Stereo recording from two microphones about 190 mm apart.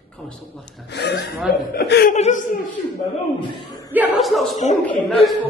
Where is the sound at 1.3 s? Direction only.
Centre (ahead or behind).